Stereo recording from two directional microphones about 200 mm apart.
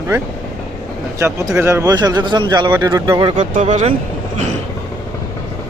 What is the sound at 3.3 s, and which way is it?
Speech, 40° right (ahead or behind).